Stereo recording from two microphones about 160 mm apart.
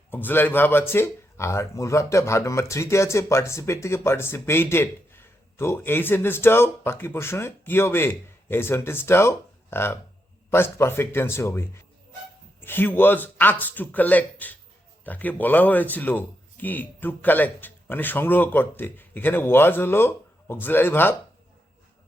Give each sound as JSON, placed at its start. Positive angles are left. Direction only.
{"t": 0.1, "sound": "speech", "side_deg": 10}